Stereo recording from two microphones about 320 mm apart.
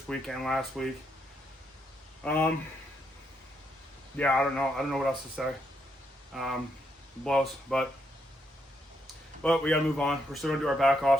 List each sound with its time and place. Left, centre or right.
0.1 s speech: centre
2.2 s speech: centre
4.2 s speech: centre
9.4 s speech: centre